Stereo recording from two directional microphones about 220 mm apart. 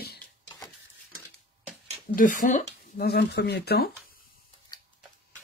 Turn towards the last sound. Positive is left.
turn(degrees=45)  # may be behind; listen again after turning